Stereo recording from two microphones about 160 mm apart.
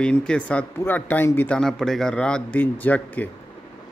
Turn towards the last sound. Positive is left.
turn(degrees=10)  # may be behind; listen again after turning